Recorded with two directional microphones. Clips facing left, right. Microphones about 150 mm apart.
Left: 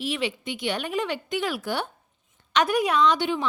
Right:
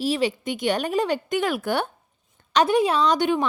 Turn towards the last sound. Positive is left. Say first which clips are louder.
# right 2 dB
turn(degrees=-50)  # may be behind; listen again after turning